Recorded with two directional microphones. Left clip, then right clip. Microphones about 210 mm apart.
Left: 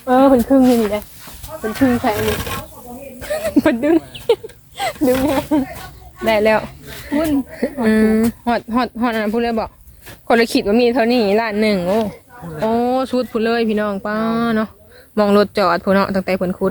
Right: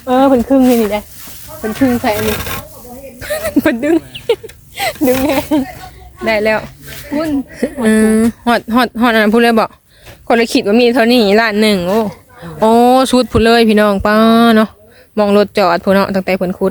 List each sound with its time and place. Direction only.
0.0 s speech: 10° right (ahead or behind)
1.8 s speech: 15° right (ahead or behind)
2.1 s speech: 40° right (ahead or behind)
3.2 s a sound: 10° right (ahead or behind)
5.2 s speech: 25° right (ahead or behind)
6.2 s speech: centre (ahead or behind)
7.1 s speech: 15° right (ahead or behind); by 9.7 s 40° right (ahead or behind)
10.2 s speech: 10° right (ahead or behind)
12.6 s speech: 25° right (ahead or behind)
15.1 s speech: 10° right (ahead or behind)